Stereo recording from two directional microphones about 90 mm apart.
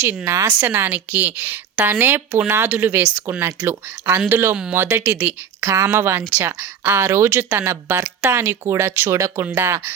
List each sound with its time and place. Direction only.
0.3 s speech: 30° right (ahead or behind)